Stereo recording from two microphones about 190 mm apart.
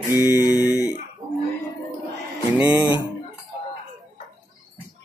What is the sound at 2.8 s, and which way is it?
Speech, 20° right (ahead or behind).